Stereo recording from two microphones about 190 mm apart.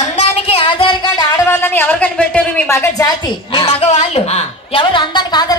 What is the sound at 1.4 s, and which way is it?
A woman's voice, 10° left (ahead or behind).